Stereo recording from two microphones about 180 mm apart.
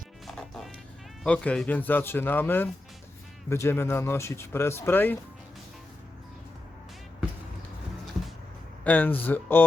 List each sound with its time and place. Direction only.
0.3 s bow-wow: centre (ahead or behind)
1.2 s speech: 5° left (ahead or behind)
8.8 s speech: 10° left (ahead or behind)